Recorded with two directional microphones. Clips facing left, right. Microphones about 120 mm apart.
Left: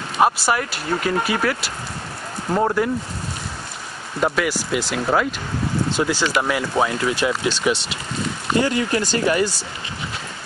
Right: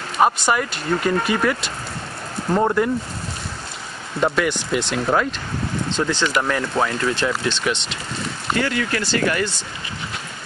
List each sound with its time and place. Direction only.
0.2 s speech: 5° left (ahead or behind)
4.2 s speech: 5° left (ahead or behind)
8.5 s speech: 20° left (ahead or behind)